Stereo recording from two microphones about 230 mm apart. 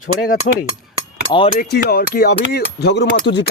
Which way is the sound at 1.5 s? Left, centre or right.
Left.